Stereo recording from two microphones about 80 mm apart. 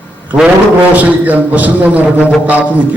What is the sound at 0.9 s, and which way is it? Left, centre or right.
A man's voice, centre.